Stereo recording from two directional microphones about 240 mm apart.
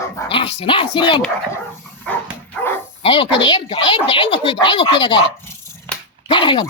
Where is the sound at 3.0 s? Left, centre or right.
Left.